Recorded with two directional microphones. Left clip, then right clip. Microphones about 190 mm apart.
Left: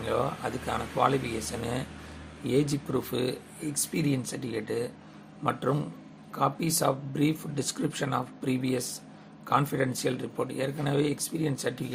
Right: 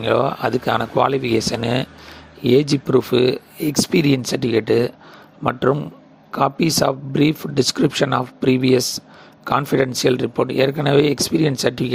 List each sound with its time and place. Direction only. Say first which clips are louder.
0.0 s speech: right 12 dB; 40° right (ahead or behind)